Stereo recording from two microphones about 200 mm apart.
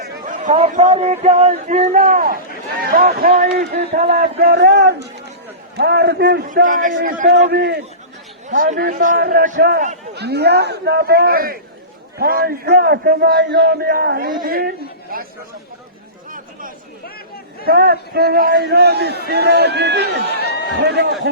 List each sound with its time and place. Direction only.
0.0 s a man's voice: 40° right (ahead or behind)
6.5 s a man's voice: 40° right (ahead or behind)
7.4 s a man's voice: 55° right (ahead or behind)
8.4 s a man's voice: 40° right (ahead or behind)
16.3 s chatter: 45° right (ahead or behind)
17.7 s a man's voice: 50° right (ahead or behind)
20.4 s a sound: 55° left (ahead or behind)
20.8 s a man's voice: 55° right (ahead or behind)